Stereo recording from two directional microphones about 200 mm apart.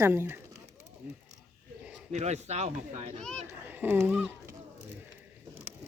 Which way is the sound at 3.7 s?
10° right (ahead or behind).